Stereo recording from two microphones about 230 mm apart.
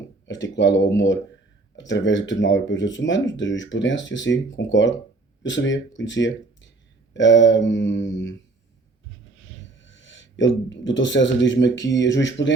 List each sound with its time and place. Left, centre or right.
0.3 s speech: left
9.6 s speech: left